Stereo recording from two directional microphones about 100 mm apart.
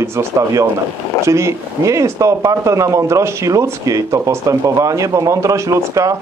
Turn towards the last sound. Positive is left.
turn(degrees=-35)  # may be behind; listen again after turning